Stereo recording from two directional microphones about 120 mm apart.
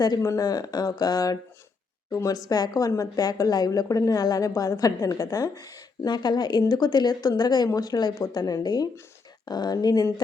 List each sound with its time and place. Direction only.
0.0 s a woman's voice: 30° left (ahead or behind)